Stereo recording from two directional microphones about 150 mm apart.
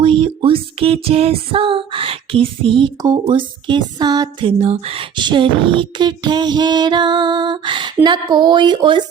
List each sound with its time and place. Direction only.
0.0 s music: 35° right (ahead or behind)